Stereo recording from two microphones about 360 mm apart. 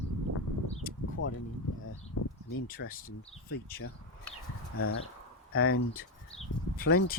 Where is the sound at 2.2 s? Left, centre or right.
Left.